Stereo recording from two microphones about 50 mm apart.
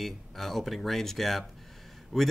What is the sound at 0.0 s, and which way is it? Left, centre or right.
Speech, centre.